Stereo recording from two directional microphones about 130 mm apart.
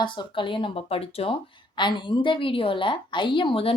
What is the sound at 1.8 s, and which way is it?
Speech, 35° left (ahead or behind).